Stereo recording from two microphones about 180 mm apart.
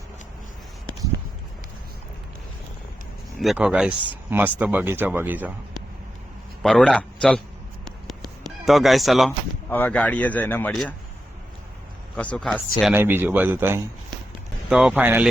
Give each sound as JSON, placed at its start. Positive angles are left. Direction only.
{"t": 3.3, "sound": "speech", "side_deg": 0}
{"t": 6.6, "sound": "speech", "side_deg": 5}
{"t": 8.0, "sound": "a sound", "side_deg": 0}
{"t": 9.6, "sound": "speech", "side_deg": 10}
{"t": 12.1, "sound": "speech", "side_deg": 5}
{"t": 12.9, "sound": "speech", "side_deg": -10}